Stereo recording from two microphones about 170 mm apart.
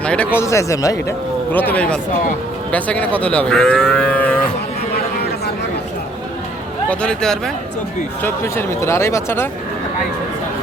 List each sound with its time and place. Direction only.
0.0 s a sound: 5° left (ahead or behind)
0.3 s speech: 15° left (ahead or behind)
2.7 s livestock: 10° left (ahead or behind)
6.9 s speech: 5° left (ahead or behind)
8.2 s speech: 15° left (ahead or behind)